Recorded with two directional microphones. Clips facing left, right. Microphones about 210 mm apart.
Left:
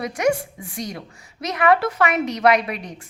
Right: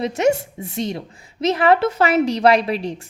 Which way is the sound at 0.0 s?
25° right (ahead or behind).